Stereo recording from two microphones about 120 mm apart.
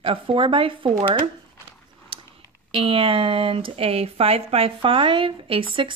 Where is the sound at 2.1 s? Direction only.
45° right (ahead or behind).